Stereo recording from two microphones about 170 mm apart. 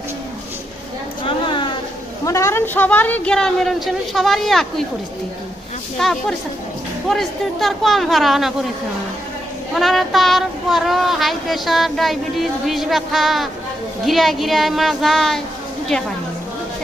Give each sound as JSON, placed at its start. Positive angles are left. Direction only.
{"t": 1.2, "sound": "a sound", "side_deg": 30}
{"t": 2.2, "sound": "speech", "side_deg": 15}
{"t": 5.9, "sound": "speech", "side_deg": 0}
{"t": 9.8, "sound": "speech", "side_deg": 0}